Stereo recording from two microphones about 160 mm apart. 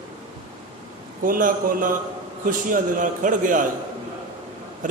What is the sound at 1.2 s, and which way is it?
A man's voice, 60° right (ahead or behind).